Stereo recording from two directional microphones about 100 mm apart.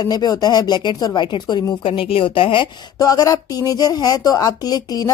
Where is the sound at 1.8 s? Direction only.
65° left (ahead or behind).